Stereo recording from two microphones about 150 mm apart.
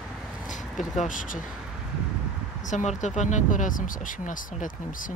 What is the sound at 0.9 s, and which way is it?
Speech, 60° left (ahead or behind).